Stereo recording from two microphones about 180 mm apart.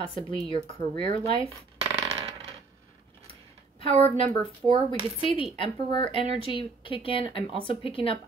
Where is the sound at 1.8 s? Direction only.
35° right (ahead or behind).